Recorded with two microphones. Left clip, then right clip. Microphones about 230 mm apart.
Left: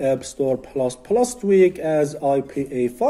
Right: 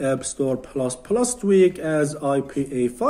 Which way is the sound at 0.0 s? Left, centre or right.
Centre.